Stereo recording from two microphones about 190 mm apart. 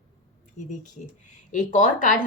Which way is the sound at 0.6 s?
40° left (ahead or behind).